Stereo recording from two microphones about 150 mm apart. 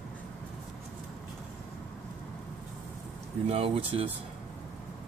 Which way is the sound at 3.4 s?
40° right (ahead or behind).